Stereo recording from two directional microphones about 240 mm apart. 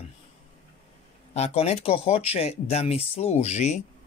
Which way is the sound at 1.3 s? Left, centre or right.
Left.